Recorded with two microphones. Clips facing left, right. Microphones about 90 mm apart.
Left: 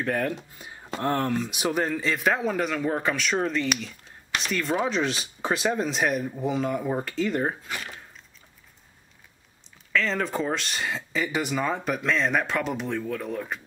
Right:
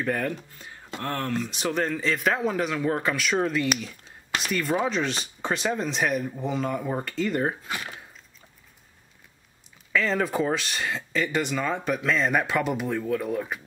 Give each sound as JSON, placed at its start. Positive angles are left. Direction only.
{"t": 0.0, "sound": "speech", "side_deg": 0}
{"t": 0.3, "sound": "speech", "side_deg": 15}
{"t": 7.6, "sound": "speech", "side_deg": -20}
{"t": 9.9, "sound": "speech", "side_deg": -5}